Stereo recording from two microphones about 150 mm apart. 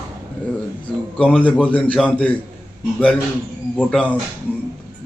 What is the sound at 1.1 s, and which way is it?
A man's voice, 5° left (ahead or behind).